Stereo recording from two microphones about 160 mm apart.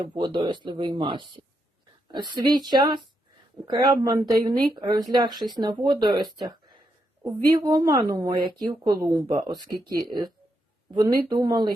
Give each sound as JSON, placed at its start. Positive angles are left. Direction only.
{"t": 0.0, "sound": "speech", "side_deg": -30}